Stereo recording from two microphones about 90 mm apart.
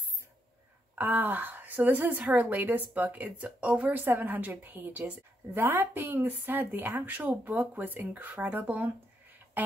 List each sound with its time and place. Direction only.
0.9 s a woman's voice: 20° right (ahead or behind)